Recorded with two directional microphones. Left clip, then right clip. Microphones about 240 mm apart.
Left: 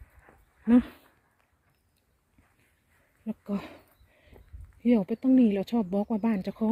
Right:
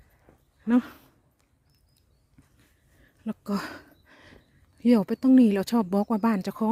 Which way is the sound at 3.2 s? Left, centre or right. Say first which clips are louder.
Right 4 dB; right.